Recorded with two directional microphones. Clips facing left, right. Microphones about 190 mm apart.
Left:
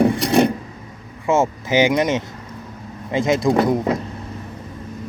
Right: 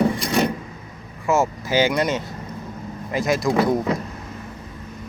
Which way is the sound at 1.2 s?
25° left (ahead or behind).